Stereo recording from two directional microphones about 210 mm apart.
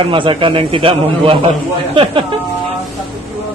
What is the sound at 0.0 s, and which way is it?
A man's voice, 25° right (ahead or behind).